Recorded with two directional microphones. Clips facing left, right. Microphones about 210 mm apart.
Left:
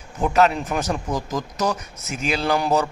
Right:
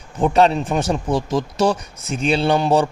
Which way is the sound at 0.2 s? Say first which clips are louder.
Right 3 dB; 30° right (ahead or behind).